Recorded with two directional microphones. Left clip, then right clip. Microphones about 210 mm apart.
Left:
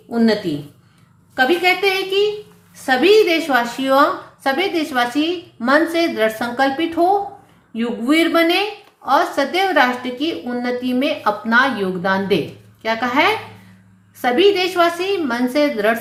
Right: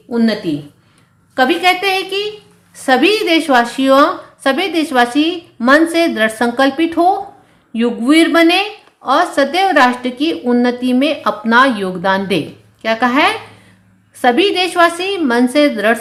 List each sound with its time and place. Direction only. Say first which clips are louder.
0.1 s speech: right 1 dB; 40° right (ahead or behind)
1.4 s a woman's voice: right 3 dB; 45° right (ahead or behind)